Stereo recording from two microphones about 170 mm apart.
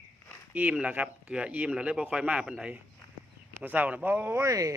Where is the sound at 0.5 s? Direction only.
10° right (ahead or behind).